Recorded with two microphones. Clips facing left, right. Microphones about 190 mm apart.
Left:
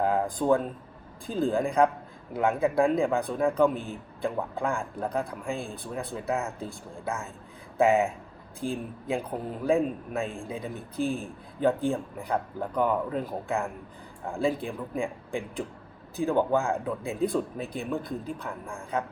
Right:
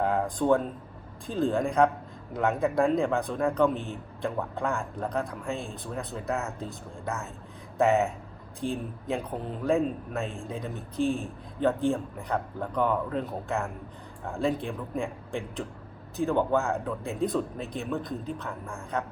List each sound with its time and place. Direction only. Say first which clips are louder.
0.0 s speech: even; centre (ahead or behind)
7.8 s speech: left 1 dB; 5° left (ahead or behind)